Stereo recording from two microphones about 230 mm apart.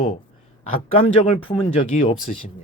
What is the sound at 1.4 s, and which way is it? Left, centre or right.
Speech, left.